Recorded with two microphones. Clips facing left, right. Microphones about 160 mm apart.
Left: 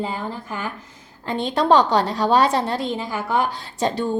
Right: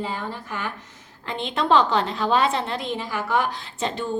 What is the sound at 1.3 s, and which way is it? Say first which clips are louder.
A woman's voice: left 4 dB; 35° left (ahead or behind).